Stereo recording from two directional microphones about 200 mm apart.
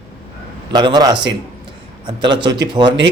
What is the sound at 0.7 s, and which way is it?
Speech, 20° right (ahead or behind).